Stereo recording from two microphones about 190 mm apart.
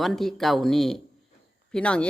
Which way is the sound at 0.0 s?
Centre (ahead or behind).